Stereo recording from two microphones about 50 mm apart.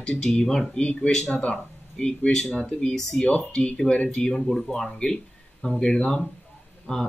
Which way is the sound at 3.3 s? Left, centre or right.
Left.